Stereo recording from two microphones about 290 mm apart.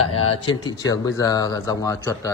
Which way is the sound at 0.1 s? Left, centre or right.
Left.